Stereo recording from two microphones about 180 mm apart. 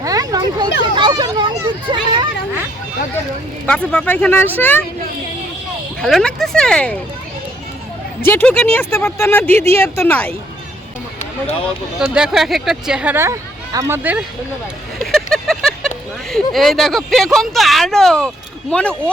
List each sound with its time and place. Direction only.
0.0 s a sound: 20° right (ahead or behind)
0.8 s speech: 25° right (ahead or behind)
3.7 s speech: 5° left (ahead or behind)
6.0 s speech: 5° left (ahead or behind)
8.2 s speech: 10° left (ahead or behind)
11.9 s speech: 5° right (ahead or behind)
15.0 s vehicle: centre (ahead or behind)
16.3 s speech: centre (ahead or behind)